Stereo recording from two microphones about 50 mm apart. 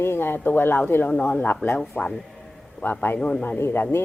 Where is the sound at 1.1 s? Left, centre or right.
Left.